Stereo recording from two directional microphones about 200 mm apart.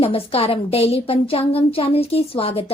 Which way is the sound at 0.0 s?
30° left (ahead or behind).